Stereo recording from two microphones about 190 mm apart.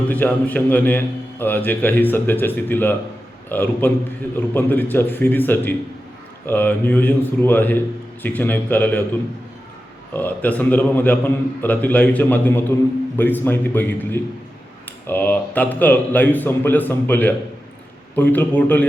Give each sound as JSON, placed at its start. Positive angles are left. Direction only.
{"t": 0.1, "sound": "a man's voice", "side_deg": 10}
{"t": 10.1, "sound": "a man's voice", "side_deg": 10}